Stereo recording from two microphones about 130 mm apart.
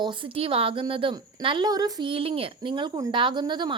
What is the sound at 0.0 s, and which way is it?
A woman's voice, 40° right (ahead or behind).